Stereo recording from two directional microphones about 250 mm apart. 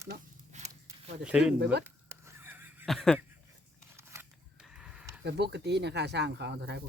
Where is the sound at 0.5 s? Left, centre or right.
Right.